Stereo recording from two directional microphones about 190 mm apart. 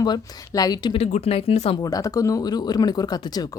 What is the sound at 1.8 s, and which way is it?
Speech, 20° left (ahead or behind).